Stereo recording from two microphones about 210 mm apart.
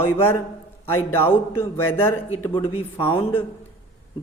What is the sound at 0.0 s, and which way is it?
Speech, 10° left (ahead or behind).